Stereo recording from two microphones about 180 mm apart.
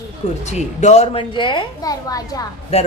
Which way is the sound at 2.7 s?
35° left (ahead or behind).